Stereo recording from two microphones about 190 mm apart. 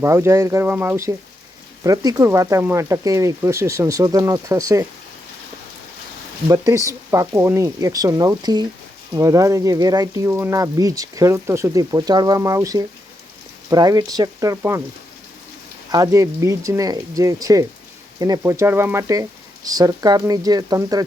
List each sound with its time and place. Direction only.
0.0 s speech: 15° right (ahead or behind)
6.5 s speech: 15° right (ahead or behind)
15.9 s speech: 15° right (ahead or behind)